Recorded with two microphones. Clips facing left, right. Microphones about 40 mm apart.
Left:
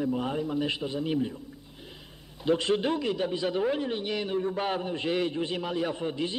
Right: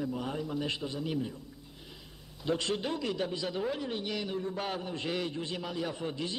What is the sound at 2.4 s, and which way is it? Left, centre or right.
A man's voice, left.